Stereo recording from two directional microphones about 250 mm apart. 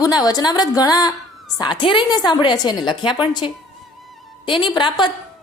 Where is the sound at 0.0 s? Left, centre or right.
Centre.